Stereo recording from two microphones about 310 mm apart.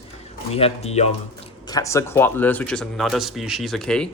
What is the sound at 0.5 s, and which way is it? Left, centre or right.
Speech, centre.